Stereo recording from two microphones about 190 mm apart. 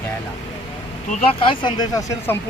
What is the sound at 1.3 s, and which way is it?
Speech, 25° left (ahead or behind).